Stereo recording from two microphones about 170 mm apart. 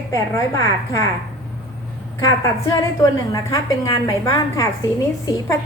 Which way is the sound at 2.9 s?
20° left (ahead or behind).